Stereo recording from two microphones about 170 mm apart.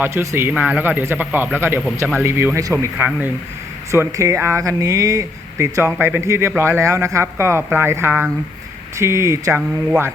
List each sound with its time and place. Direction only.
0.0 s speech: 15° right (ahead or behind)